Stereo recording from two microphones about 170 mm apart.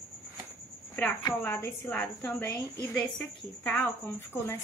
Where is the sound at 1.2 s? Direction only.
15° left (ahead or behind).